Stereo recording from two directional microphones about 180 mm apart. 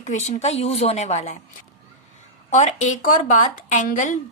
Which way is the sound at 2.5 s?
40° left (ahead or behind).